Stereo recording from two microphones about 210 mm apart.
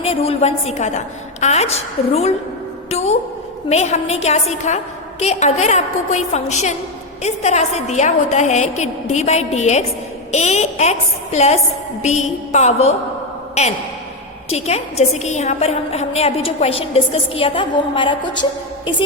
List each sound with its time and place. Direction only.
0.0 s a woman's voice: 25° left (ahead or behind)